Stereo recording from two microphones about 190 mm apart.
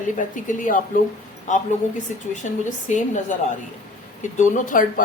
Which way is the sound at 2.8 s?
40° left (ahead or behind).